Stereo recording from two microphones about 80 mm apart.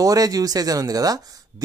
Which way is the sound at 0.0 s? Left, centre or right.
Right.